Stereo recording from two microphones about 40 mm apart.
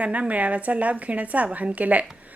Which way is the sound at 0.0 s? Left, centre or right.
Right.